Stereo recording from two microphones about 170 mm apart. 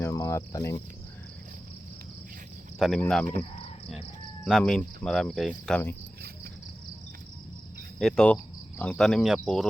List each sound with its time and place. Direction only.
0.0 s cricket: 15° left (ahead or behind)
2.7 s speech: centre (ahead or behind)
3.0 s cricket: 5° left (ahead or behind)
4.4 s cricket: centre (ahead or behind)
7.9 s cricket: 5° left (ahead or behind)